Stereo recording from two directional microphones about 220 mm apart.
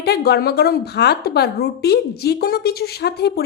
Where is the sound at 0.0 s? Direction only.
45° left (ahead or behind).